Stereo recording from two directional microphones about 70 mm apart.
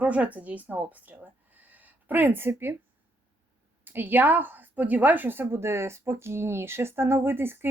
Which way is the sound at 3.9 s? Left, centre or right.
Right.